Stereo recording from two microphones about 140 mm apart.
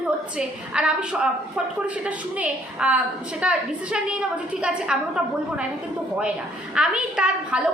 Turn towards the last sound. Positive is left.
turn(degrees=-5)  # may be behind; listen again after turning